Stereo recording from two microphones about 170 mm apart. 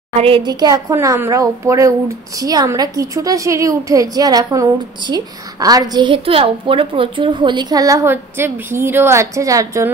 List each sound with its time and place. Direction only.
0.2 s a woman's voice: 30° right (ahead or behind)